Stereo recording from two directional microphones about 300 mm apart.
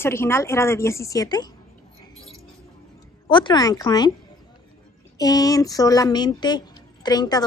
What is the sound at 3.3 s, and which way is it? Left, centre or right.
Speech, centre.